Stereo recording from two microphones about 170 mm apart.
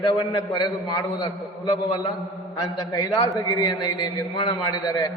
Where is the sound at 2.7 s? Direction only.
25° left (ahead or behind).